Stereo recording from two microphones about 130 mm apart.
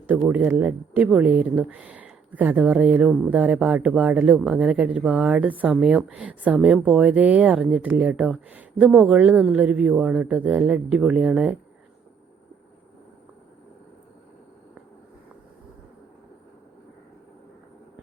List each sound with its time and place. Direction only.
0.1 s speech: 10° right (ahead or behind)